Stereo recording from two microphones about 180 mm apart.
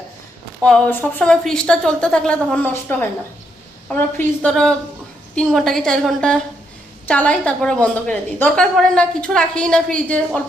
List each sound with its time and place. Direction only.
0.6 s a woman's voice: 5° left (ahead or behind)